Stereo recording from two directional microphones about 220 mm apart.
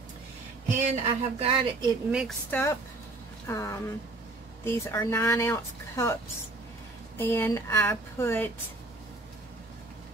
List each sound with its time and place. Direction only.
1.0 s a woman's voice: 25° right (ahead or behind)
2.0 s a woman's voice: 5° right (ahead or behind)
2.5 s speech: 15° left (ahead or behind)
7.2 s speech: 10° left (ahead or behind)